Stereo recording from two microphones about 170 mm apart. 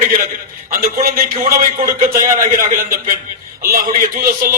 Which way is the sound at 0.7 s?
60° right (ahead or behind).